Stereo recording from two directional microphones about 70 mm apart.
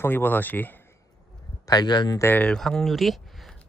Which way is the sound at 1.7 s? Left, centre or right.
Left.